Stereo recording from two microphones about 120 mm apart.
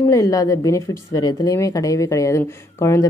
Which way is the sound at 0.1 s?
30° left (ahead or behind).